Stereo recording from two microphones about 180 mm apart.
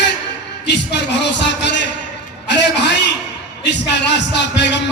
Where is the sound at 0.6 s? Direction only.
75° left (ahead or behind).